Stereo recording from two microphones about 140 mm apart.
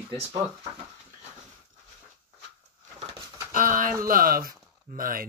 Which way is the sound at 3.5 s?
75° right (ahead or behind).